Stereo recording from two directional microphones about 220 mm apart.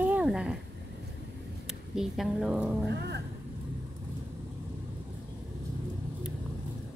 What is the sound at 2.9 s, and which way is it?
Speech, 50° right (ahead or behind).